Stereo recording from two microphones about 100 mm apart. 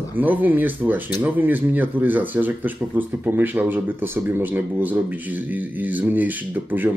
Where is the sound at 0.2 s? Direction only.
15° right (ahead or behind).